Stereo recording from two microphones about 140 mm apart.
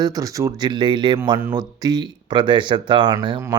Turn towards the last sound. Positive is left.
turn(degrees=-35)  # may be behind; listen again after turning